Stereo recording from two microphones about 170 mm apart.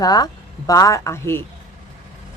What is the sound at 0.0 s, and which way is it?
Speech, 25° left (ahead or behind).